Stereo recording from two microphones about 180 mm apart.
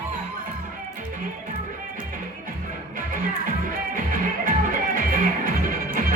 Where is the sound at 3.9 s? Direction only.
50° right (ahead or behind).